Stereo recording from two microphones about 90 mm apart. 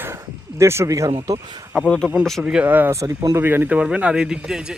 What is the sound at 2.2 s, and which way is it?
Speech, 5° left (ahead or behind).